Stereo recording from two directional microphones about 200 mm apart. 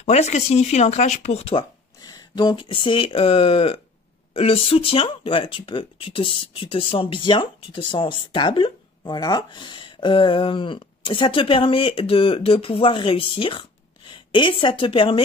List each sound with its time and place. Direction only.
0.0 s speech: 35° left (ahead or behind)